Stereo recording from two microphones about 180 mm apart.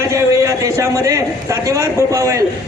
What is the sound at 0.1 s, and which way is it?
A man's voice, 15° right (ahead or behind).